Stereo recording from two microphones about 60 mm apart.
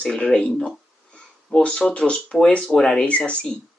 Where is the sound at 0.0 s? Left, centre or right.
Centre.